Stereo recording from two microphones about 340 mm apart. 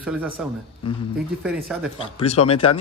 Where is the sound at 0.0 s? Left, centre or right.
Centre.